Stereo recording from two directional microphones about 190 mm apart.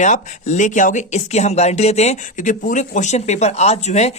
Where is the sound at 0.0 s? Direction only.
40° left (ahead or behind).